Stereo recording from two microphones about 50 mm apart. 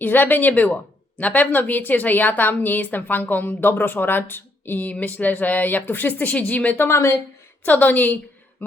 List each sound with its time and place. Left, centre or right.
0.0 s a woman's voice: left
4.9 s a woman's voice: left
6.7 s a woman's voice: left
7.6 s a woman's voice: left